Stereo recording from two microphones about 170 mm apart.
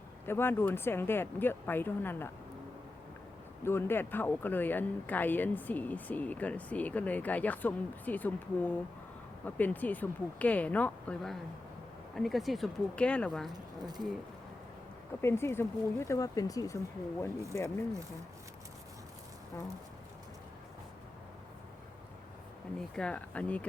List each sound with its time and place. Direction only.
0.3 s speech: 15° left (ahead or behind)
3.6 s speech: 15° left (ahead or behind)
13.5 s speech: 25° right (ahead or behind)
15.2 s speech: 15° left (ahead or behind)
23.0 s speech: 5° left (ahead or behind)